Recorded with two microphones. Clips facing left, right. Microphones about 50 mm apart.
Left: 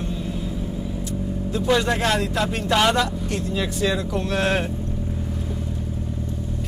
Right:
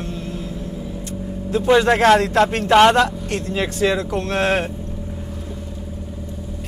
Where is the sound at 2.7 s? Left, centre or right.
Right.